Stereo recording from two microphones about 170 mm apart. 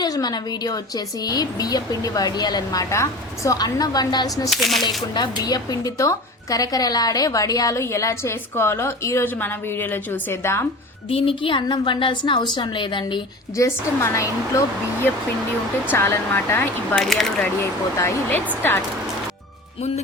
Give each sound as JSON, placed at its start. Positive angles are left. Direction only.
{"t": 0.0, "sound": "a woman's voice", "side_deg": 25}
{"t": 4.4, "sound": "speech", "side_deg": 0}
{"t": 5.1, "sound": "a woman's voice", "side_deg": 25}
{"t": 11.1, "sound": "a woman's voice", "side_deg": 30}
{"t": 13.7, "sound": "a woman's voice", "side_deg": 15}
{"t": 15.9, "sound": "a woman's voice", "side_deg": 15}
{"t": 17.0, "sound": "speech", "side_deg": 0}
{"t": 17.6, "sound": "a woman's voice", "side_deg": 15}